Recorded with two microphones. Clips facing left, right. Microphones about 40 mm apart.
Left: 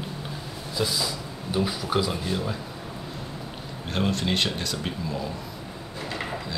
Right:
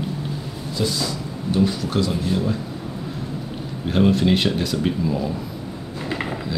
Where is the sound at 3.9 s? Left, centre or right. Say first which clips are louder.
Right 9 dB; centre.